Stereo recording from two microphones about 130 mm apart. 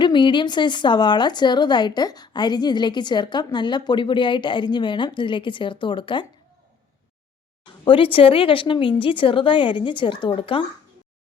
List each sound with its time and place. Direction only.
0.0 s speech: 35° left (ahead or behind)
7.9 s speech: 40° left (ahead or behind)